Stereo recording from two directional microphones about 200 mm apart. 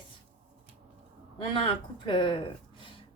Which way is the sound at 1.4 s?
25° left (ahead or behind).